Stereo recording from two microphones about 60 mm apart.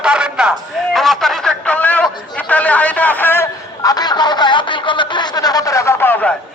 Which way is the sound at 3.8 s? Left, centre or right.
Left.